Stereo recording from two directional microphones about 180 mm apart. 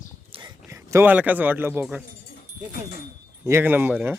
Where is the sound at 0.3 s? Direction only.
30° right (ahead or behind).